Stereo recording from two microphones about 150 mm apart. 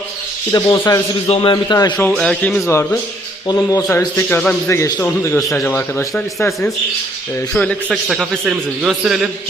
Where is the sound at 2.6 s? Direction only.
20° left (ahead or behind).